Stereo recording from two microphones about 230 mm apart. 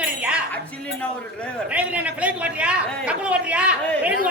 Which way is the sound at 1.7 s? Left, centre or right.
Centre.